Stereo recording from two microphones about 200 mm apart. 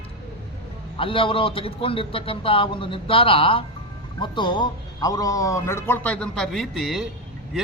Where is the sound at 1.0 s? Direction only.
25° left (ahead or behind).